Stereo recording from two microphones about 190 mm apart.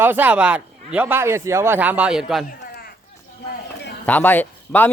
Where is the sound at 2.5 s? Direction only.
50° left (ahead or behind).